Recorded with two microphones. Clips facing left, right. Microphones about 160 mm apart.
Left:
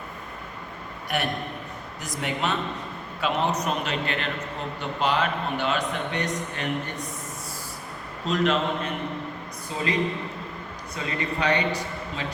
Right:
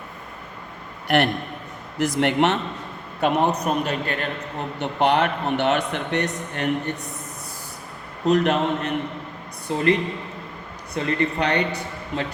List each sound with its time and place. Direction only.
1.0 s a man's voice: 75° right (ahead or behind)
3.2 s a man's voice: 55° right (ahead or behind)
4.8 s a man's voice: 65° right (ahead or behind)
8.2 s a man's voice: 60° right (ahead or behind)